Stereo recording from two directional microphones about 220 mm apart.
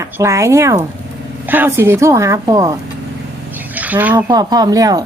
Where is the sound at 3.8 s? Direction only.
5° right (ahead or behind).